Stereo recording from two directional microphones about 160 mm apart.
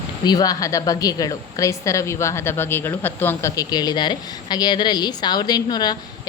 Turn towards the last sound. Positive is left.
turn(degrees=25)  # may be behind; listen again after turning